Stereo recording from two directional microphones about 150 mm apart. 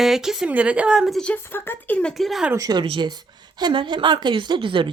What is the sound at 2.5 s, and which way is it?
Speech, 25° right (ahead or behind).